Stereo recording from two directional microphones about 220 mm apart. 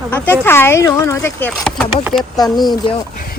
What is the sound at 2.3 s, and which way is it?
Speech, 20° left (ahead or behind).